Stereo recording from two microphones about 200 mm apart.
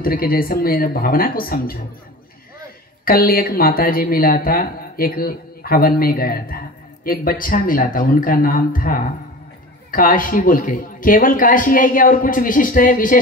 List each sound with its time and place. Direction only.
0.0 s speech: 45° left (ahead or behind)
3.1 s speech: 45° left (ahead or behind)